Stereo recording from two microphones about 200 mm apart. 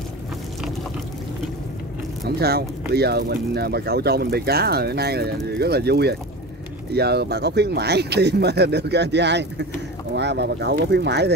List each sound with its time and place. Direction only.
2.2 s speech: 50° right (ahead or behind)